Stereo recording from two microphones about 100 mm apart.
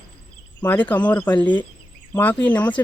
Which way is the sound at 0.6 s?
15° left (ahead or behind).